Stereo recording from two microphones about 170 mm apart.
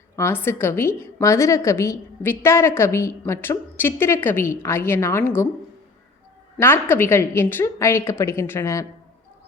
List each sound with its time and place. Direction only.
0.2 s a woman's voice: 15° left (ahead or behind)
6.6 s a woman's voice: 15° left (ahead or behind)